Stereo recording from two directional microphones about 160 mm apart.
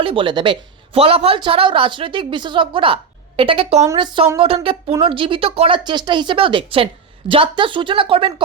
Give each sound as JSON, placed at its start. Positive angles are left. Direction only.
{"t": 0.0, "sound": "a woman's voice", "side_deg": -30}